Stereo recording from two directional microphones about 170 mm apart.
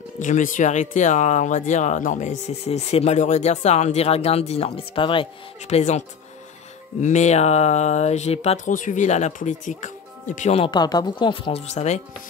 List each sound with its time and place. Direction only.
0.2 s speech: 50° left (ahead or behind)
10.6 s speech: 25° left (ahead or behind); by 12.0 s 40° left (ahead or behind)